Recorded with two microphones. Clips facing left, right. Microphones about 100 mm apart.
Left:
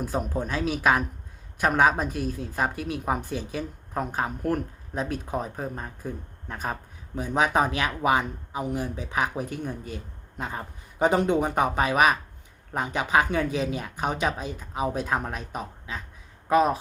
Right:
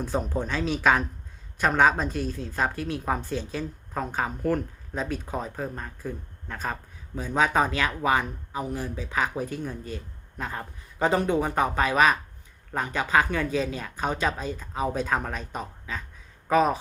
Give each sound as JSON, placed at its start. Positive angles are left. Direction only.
{"t": 0.0, "sound": "speech", "side_deg": 10}